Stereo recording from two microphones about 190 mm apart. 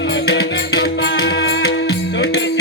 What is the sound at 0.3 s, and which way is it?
Music, 55° left (ahead or behind).